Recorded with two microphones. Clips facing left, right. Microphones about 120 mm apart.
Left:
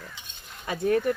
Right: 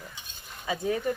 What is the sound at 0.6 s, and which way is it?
Speech, 60° left (ahead or behind).